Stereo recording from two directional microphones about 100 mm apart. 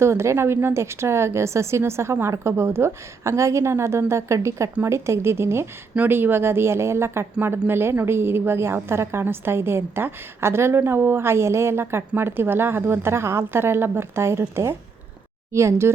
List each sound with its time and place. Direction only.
0.0 s a woman's voice: 25° right (ahead or behind)